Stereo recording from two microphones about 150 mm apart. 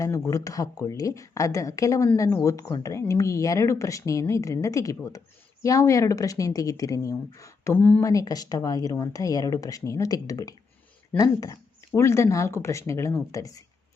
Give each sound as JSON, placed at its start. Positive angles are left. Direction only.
{"t": 0.0, "sound": "speech", "side_deg": 20}
{"t": 8.0, "sound": "speech", "side_deg": 25}